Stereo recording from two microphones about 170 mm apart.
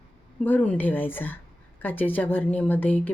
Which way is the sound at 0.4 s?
10° left (ahead or behind).